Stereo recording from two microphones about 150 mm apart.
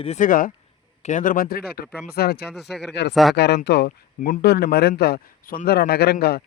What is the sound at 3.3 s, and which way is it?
Speech, 90° left.